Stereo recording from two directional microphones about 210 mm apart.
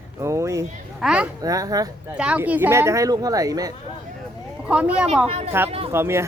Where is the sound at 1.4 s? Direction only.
15° right (ahead or behind).